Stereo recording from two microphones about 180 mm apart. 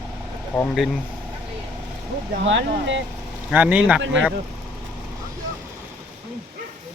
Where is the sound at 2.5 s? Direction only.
90° right.